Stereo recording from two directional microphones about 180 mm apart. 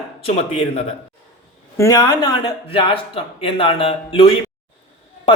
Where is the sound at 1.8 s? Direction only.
20° left (ahead or behind).